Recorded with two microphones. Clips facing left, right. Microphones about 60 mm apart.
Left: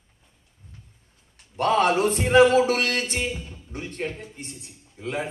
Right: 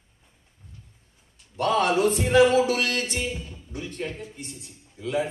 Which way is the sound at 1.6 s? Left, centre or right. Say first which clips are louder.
Left 2 dB; left.